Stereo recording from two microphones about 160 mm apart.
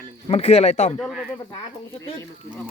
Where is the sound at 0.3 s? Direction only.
40° left (ahead or behind).